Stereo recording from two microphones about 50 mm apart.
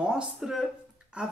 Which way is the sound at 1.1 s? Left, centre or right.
Centre.